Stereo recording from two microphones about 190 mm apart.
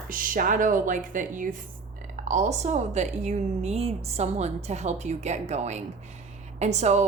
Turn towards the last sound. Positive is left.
turn(degrees=-35)  # may be behind; listen again after turning